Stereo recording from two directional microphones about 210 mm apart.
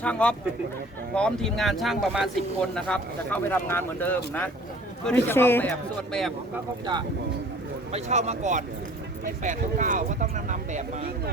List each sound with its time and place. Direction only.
0.0 s a man's voice: 5° left (ahead or behind)
7.9 s speech: 30° right (ahead or behind)